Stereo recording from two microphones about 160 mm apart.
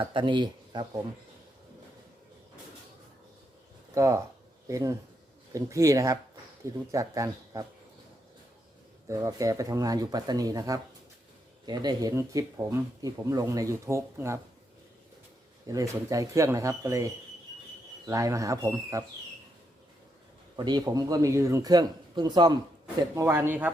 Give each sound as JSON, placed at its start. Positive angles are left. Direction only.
{"t": 0.0, "sound": "speech", "side_deg": -30}
{"t": 3.9, "sound": "speech", "side_deg": -20}
{"t": 9.0, "sound": "speech", "side_deg": -20}
{"t": 15.6, "sound": "speech", "side_deg": -20}
{"t": 20.6, "sound": "speech", "side_deg": -25}
{"t": 23.1, "sound": "speech", "side_deg": -15}